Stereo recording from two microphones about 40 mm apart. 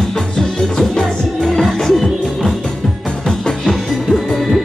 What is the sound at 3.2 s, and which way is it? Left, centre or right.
Music, centre.